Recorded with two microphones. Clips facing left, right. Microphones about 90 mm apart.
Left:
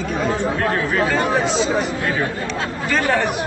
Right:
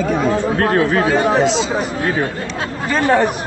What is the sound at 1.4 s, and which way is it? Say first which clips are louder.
Speech: right 3 dB; 90° right.